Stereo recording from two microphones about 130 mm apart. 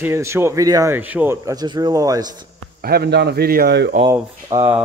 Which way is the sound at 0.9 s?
15° right (ahead or behind).